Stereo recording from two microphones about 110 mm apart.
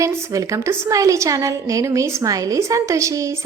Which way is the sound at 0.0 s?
30° right (ahead or behind).